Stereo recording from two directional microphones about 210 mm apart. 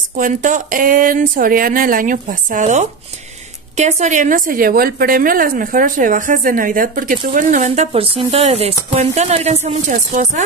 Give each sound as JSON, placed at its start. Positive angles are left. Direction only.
{"t": 0.2, "sound": "a woman's voice", "side_deg": -40}